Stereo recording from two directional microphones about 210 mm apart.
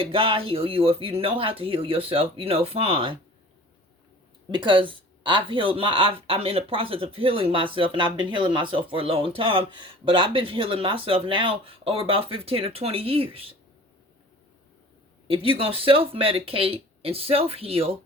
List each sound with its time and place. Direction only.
0.0 s speech: 25° right (ahead or behind)
4.5 s speech: 25° right (ahead or behind)
15.3 s speech: 25° right (ahead or behind)